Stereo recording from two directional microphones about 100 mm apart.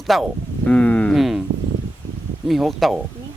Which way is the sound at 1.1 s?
Centre (ahead or behind).